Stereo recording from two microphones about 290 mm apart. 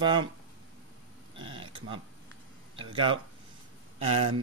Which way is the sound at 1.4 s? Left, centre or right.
Centre.